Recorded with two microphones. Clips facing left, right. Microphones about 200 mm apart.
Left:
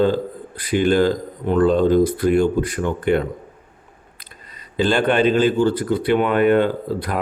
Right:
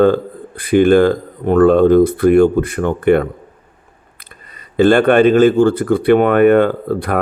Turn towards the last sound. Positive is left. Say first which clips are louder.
# right 5 dB
turn(degrees=-55)  # may be behind; listen again after turning